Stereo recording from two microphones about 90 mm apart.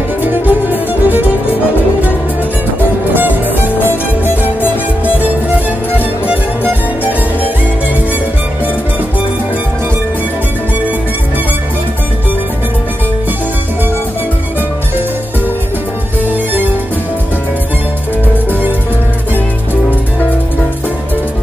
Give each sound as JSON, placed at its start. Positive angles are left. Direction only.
{"t": 0.2, "sound": "music", "side_deg": -20}
{"t": 3.2, "sound": "music", "side_deg": -20}
{"t": 4.6, "sound": "music", "side_deg": 20}
{"t": 5.9, "sound": "music", "side_deg": -20}
{"t": 16.3, "sound": "music", "side_deg": -20}